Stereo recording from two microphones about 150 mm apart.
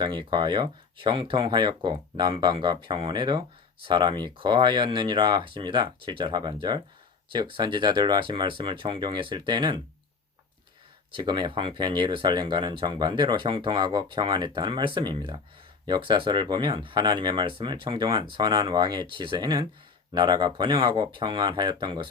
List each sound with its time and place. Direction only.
0.0 s speech: 30° right (ahead or behind)
11.1 s speech: 30° right (ahead or behind)